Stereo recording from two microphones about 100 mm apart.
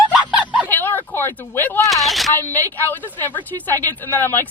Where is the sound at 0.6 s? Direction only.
20° left (ahead or behind).